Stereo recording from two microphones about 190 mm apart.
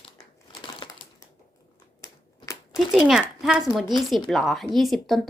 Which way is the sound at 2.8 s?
Centre (ahead or behind).